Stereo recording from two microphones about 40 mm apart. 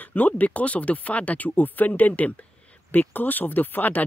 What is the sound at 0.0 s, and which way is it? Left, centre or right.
Speech, left.